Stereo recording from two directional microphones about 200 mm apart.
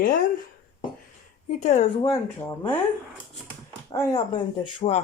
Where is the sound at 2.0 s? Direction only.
15° left (ahead or behind).